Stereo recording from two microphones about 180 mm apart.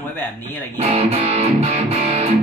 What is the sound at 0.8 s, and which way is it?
Music, 35° right (ahead or behind).